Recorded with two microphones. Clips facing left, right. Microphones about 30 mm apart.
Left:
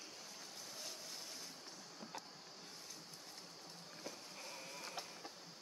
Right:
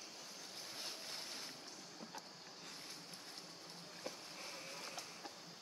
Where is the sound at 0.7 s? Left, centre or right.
Right.